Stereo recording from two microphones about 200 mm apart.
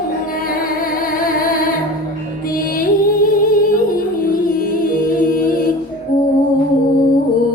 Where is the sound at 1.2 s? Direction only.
45° left (ahead or behind).